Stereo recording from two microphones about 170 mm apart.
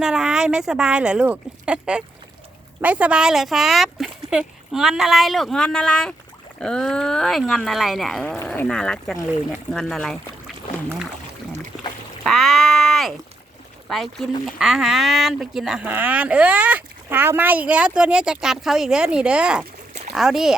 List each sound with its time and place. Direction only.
0.0 s speech: 5° right (ahead or behind)
12.2 s a sound: centre (ahead or behind)
13.8 s speech: centre (ahead or behind)